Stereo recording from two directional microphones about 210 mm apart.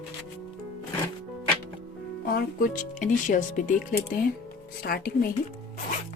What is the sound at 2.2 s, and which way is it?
Speech, 45° left (ahead or behind).